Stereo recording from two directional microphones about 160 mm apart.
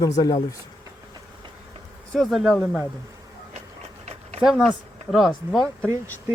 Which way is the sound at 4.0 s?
45° right (ahead or behind).